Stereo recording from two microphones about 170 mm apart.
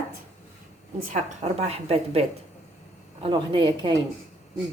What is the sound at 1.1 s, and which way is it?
A woman's voice, 40° right (ahead or behind).